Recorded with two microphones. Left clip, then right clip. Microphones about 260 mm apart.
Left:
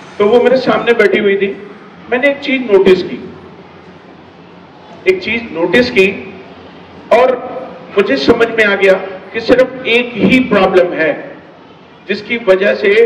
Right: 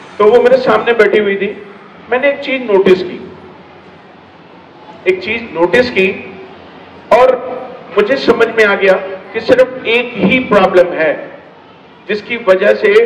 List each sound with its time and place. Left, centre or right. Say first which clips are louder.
0.2 s a man's voice: right 2 dB; centre
5.0 s a man's voice: left 1 dB; centre
7.1 s a sound: right 1 dB; centre
7.9 s a man's voice: even; centre